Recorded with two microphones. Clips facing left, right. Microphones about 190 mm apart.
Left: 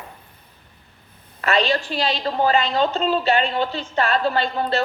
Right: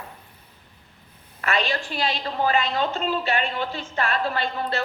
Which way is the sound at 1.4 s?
30° left (ahead or behind).